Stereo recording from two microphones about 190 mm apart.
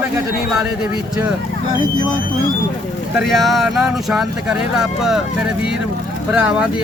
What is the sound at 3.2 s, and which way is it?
Speech, centre (ahead or behind).